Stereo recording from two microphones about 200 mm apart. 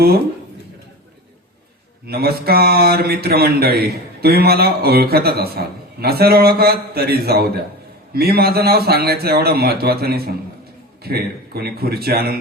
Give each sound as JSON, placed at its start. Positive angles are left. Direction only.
{"t": 2.0, "sound": "speech", "side_deg": -50}